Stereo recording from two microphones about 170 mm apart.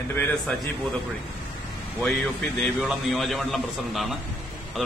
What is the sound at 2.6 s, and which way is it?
A man's voice, centre (ahead or behind).